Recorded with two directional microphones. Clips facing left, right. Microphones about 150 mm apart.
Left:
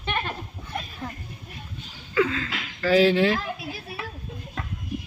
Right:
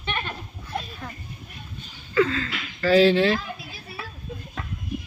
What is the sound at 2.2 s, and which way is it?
A man's voice, 10° left (ahead or behind).